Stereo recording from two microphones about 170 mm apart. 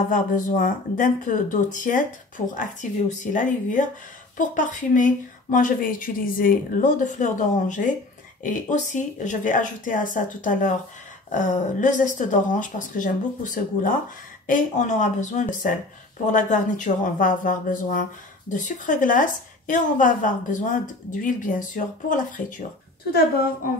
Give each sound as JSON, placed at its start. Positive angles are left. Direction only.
{"t": 0.1, "sound": "speech", "side_deg": 50}